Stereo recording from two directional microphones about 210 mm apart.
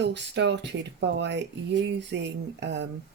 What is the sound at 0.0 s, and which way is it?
Speech, 55° right (ahead or behind).